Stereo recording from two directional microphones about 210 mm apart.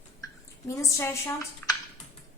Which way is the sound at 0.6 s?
15° left (ahead or behind).